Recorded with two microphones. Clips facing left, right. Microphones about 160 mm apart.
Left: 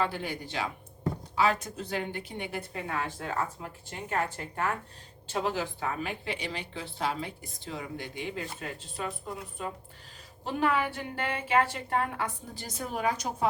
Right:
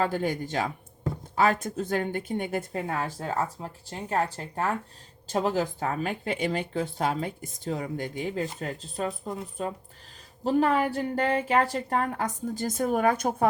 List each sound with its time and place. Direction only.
0.0 s a woman's voice: 45° right (ahead or behind)